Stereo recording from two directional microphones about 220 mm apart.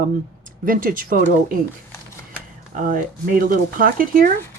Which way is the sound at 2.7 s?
35° right (ahead or behind).